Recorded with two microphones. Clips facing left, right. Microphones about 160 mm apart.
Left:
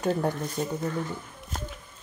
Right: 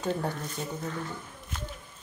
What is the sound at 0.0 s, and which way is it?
Speech, 10° left (ahead or behind).